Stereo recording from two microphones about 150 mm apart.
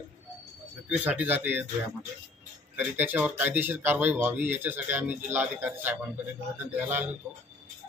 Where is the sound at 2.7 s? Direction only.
10° right (ahead or behind).